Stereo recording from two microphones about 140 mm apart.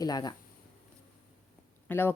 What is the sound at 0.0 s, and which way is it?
Speech, 30° left (ahead or behind).